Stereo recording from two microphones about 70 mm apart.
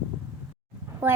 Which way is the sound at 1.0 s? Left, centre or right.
Right.